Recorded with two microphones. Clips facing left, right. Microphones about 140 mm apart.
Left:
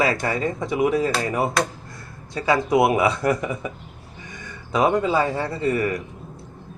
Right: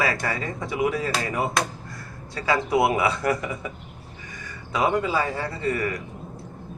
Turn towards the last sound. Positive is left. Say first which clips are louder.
# left 4 dB
turn(degrees=25)  # may be behind; listen again after turning